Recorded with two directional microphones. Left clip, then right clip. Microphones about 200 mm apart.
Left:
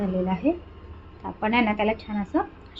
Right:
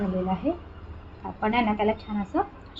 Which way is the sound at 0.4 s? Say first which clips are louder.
Left 3 dB; 15° left (ahead or behind).